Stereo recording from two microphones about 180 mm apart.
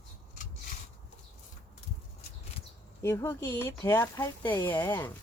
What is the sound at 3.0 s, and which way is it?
Speech, 15° left (ahead or behind).